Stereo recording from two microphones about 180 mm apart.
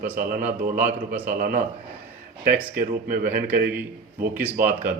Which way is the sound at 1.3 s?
50° right (ahead or behind).